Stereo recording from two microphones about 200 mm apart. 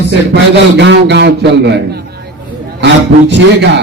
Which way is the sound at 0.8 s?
60° right (ahead or behind).